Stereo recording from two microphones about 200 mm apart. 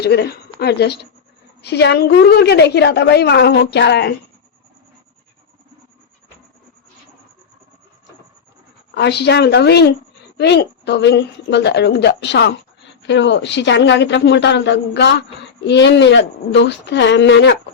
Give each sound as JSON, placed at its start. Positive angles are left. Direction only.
{"t": 0.0, "sound": "a woman's voice", "side_deg": 55}
{"t": 9.0, "sound": "a woman's voice", "side_deg": 60}